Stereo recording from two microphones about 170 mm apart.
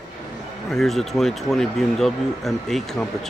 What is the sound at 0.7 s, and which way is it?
Speech, centre (ahead or behind).